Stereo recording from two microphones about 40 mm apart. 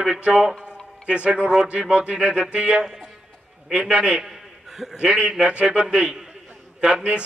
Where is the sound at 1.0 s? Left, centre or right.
Right.